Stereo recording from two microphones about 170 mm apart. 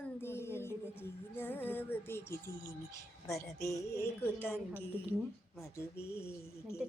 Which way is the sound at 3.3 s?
20° left (ahead or behind).